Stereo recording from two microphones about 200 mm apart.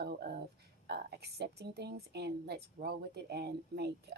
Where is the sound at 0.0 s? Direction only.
55° right (ahead or behind).